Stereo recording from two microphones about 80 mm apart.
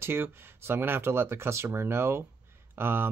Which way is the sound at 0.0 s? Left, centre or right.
Right.